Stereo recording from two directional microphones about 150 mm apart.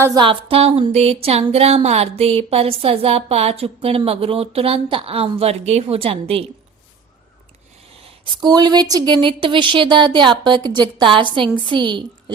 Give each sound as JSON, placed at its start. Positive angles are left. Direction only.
{"t": 0.2, "sound": "speech", "side_deg": -35}
{"t": 8.4, "sound": "speech", "side_deg": -25}